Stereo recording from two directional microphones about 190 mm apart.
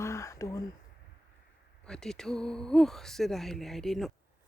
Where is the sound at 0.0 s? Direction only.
15° left (ahead or behind).